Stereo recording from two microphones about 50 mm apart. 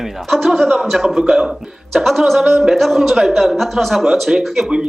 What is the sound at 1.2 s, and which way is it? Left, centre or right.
Speech, centre.